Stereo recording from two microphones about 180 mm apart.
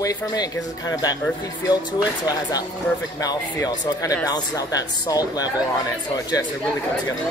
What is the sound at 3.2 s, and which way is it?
Speech, 20° left (ahead or behind).